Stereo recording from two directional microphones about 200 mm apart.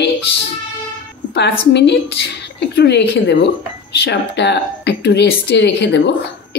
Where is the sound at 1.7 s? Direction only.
60° left (ahead or behind).